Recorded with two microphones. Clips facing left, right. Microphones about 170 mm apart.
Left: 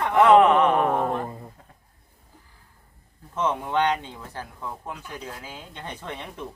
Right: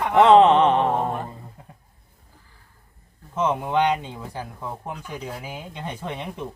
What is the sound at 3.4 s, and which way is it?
Speech, 10° right (ahead or behind).